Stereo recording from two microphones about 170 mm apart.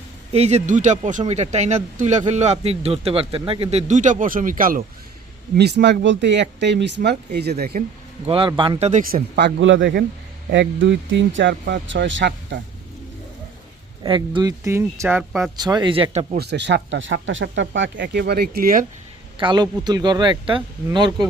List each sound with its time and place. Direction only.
0.3 s speech: 40° right (ahead or behind)
5.5 s speech: 85° right; by 7.9 s 65° right (ahead or behind)
8.3 s speech: 30° right (ahead or behind)
8.9 s speech: 50° right (ahead or behind)
9.3 s speech: 85° right
14.0 s speech: 25° right (ahead or behind)
16.4 s speech: 85° right; by 18.9 s 60° right (ahead or behind)
19.4 s speech: 25° right (ahead or behind)